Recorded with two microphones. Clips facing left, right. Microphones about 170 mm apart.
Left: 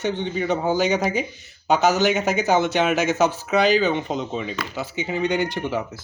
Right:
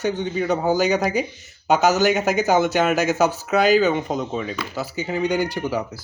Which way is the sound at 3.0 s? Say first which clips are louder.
Right 1 dB; 40° right (ahead or behind).